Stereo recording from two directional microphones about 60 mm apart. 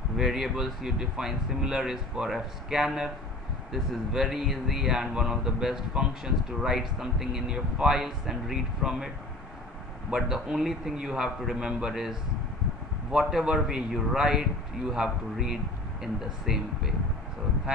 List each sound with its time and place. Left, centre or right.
0.2 s speech: centre
10.1 s speech: centre